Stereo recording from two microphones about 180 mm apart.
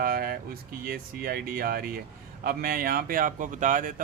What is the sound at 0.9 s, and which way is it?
Speech, 55° right (ahead or behind).